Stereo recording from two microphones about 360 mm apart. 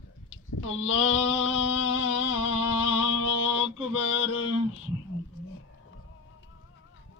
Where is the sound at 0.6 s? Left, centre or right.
Left.